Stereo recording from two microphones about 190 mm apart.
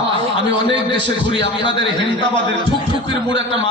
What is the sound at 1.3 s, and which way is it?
Speech, 25° left (ahead or behind).